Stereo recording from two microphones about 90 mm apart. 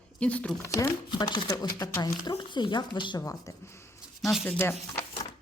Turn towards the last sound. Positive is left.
turn(degrees=25)  # may be behind; listen again after turning